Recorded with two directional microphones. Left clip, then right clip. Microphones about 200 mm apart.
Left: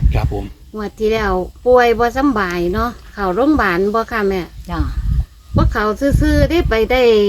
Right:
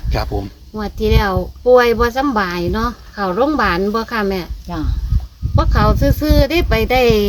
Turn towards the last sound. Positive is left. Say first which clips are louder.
# left 2 dB
turn(degrees=45)  # may be behind; listen again after turning